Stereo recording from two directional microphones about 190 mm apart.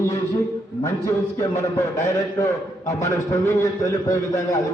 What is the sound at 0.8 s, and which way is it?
A man's voice, 15° left (ahead or behind).